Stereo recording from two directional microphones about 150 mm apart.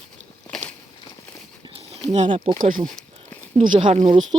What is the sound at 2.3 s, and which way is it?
Speech, 35° right (ahead or behind).